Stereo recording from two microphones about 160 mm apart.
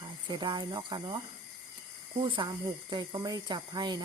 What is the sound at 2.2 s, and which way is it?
Speech, 30° right (ahead or behind).